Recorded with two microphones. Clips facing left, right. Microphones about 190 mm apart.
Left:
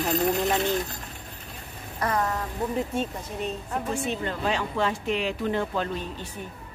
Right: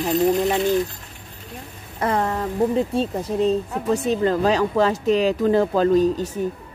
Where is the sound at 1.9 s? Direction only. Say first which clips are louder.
Right 5 dB; 30° right (ahead or behind).